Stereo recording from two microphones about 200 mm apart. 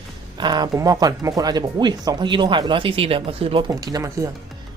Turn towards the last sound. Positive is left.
turn(degrees=-15)  # may be behind; listen again after turning